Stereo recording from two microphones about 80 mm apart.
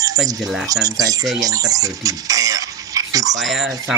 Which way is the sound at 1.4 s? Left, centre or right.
Right.